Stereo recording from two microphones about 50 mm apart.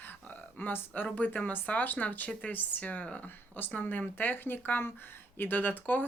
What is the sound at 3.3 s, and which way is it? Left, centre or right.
Speech, left.